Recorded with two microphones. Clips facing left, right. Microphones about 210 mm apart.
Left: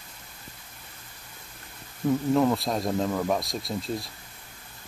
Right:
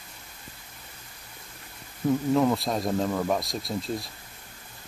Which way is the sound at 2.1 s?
Centre (ahead or behind).